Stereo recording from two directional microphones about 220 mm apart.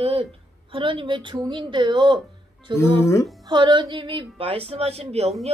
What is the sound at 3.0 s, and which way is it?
Speech, 10° left (ahead or behind).